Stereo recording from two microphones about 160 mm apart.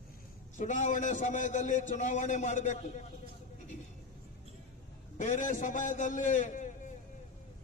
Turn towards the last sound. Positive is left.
turn(degrees=50)  # may be behind; listen again after turning